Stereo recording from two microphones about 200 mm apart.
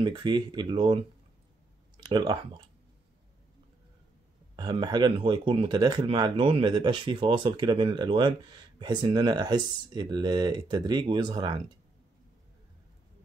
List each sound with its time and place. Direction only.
0.0 s speech: 25° right (ahead or behind)
2.0 s speech: 20° right (ahead or behind)
4.6 s speech: 20° right (ahead or behind)